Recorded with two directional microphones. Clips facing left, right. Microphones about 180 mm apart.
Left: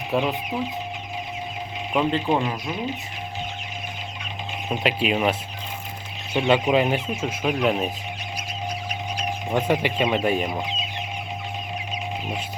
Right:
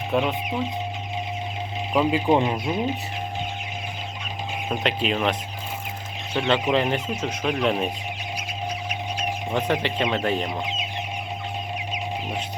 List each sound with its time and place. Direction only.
0.1 s speech: 5° left (ahead or behind)
1.9 s speech: 5° right (ahead or behind)
2.4 s speech: 25° right (ahead or behind)
4.7 s speech: 5° left (ahead or behind)
9.5 s speech: 10° left (ahead or behind)